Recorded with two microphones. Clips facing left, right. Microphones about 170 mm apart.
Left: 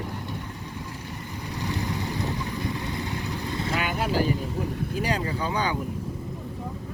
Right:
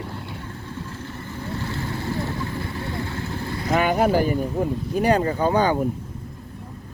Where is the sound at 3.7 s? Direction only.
45° right (ahead or behind).